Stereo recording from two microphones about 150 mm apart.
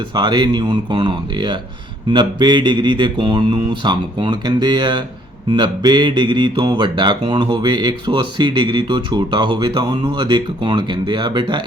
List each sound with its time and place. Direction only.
0.1 s speech: 30° right (ahead or behind)